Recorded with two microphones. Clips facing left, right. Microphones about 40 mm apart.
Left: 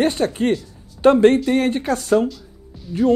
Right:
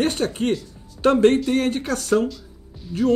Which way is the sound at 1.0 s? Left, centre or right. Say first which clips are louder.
Left 3 dB; left.